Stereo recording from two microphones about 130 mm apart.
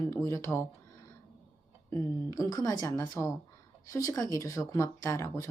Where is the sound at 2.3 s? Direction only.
25° left (ahead or behind).